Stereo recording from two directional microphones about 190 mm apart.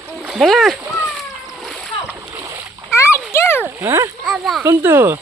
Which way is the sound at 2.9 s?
15° left (ahead or behind).